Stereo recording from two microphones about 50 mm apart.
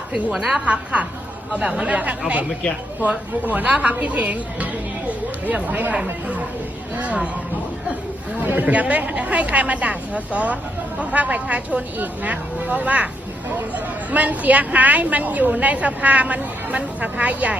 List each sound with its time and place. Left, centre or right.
0.1 s a woman's voice: centre
0.6 s a woman's voice: right
8.4 s a woman's voice: right